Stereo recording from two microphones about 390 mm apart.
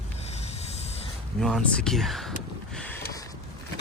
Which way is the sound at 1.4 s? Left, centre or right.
Centre.